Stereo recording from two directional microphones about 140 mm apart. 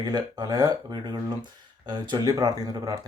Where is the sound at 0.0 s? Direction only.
25° right (ahead or behind).